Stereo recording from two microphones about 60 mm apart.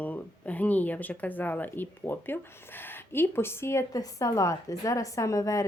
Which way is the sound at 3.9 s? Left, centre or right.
Left.